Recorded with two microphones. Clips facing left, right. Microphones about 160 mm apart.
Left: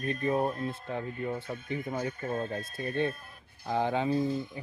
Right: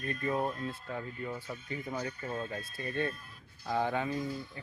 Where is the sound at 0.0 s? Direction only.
15° left (ahead or behind).